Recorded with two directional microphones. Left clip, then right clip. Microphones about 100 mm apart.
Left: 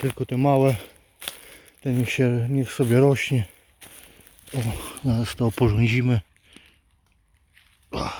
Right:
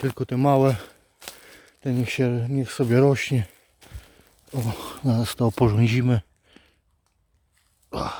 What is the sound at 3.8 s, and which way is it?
Walk, 15° left (ahead or behind).